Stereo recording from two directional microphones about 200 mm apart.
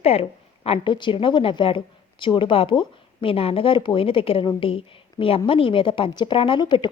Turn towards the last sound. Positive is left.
turn(degrees=25)  # may be behind; listen again after turning